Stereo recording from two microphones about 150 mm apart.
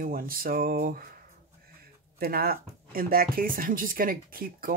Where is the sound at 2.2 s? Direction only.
90° right; by 4.7 s 70° right (ahead or behind).